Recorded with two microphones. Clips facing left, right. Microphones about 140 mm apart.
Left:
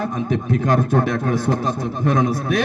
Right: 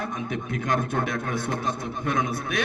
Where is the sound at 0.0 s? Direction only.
35° left (ahead or behind).